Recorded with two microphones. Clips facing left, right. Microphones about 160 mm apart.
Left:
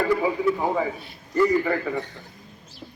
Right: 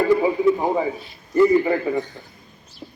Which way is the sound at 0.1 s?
20° right (ahead or behind).